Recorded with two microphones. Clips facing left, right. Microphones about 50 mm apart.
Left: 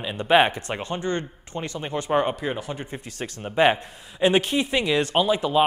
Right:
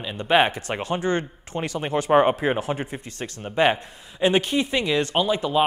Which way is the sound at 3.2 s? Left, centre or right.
Centre.